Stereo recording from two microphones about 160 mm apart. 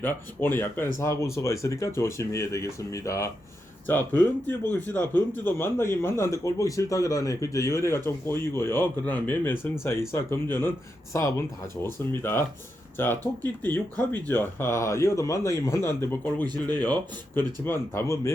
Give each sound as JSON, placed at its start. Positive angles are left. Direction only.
{"t": 0.0, "sound": "speech", "side_deg": 10}